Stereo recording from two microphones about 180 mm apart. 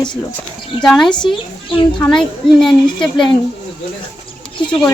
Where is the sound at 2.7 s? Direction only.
25° left (ahead or behind).